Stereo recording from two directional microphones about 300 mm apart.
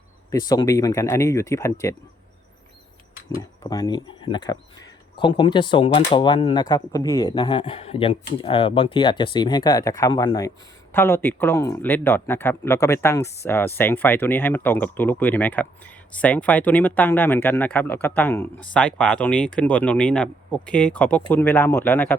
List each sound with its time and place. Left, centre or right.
0.3 s speech: centre
3.6 s speech: centre